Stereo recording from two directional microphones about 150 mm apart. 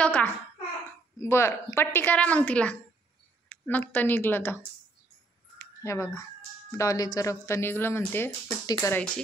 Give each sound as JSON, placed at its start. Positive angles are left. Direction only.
{"t": 0.0, "sound": "a child's voice", "side_deg": 10}
{"t": 5.6, "sound": "speech", "side_deg": 20}